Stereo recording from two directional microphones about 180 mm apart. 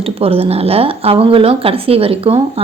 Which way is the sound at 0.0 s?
30° right (ahead or behind).